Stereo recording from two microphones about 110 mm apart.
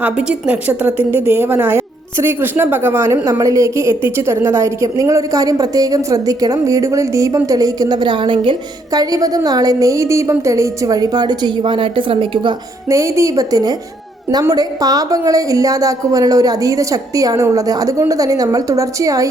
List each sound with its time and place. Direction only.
0.0 s a woman's voice: 10° right (ahead or behind); by 8.5 s 50° right (ahead or behind)
8.9 s a woman's voice: 35° right (ahead or behind)
12.9 s a woman's voice: 30° right (ahead or behind)